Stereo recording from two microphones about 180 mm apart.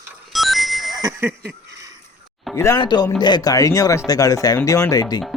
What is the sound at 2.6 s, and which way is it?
Speech, 20° left (ahead or behind).